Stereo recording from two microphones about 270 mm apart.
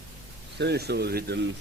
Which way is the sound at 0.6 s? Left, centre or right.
Right.